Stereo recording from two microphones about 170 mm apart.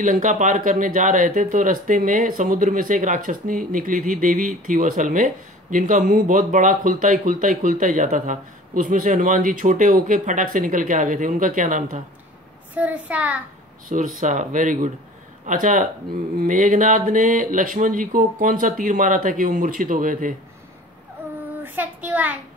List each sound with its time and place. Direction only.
0.0 s speech: 50° right (ahead or behind)
12.7 s a child's voice: 10° right (ahead or behind)
13.8 s speech: 50° right (ahead or behind)
21.6 s child singing: 10° right (ahead or behind)